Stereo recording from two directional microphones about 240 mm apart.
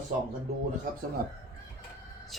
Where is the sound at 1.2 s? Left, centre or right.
Right.